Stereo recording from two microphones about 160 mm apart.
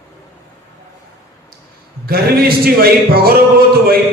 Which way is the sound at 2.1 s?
70° right (ahead or behind).